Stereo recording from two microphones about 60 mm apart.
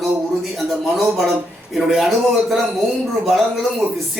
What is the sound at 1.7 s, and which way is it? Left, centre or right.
Speech, centre.